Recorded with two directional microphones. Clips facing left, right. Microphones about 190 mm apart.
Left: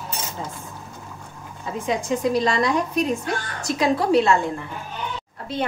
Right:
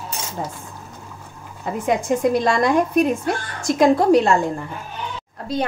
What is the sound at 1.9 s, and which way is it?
A woman's voice, 55° right (ahead or behind).